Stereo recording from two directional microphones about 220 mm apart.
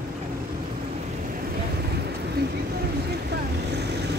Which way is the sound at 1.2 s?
40° right (ahead or behind).